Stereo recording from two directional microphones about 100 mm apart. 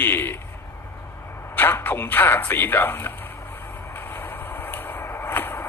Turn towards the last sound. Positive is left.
turn(degrees=20)  # may be behind; listen again after turning